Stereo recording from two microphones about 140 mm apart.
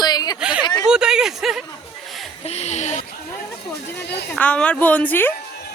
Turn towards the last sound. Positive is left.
turn(degrees=15)  # may be behind; listen again after turning